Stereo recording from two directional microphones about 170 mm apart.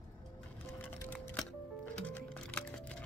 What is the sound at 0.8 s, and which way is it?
Music, 10° left (ahead or behind).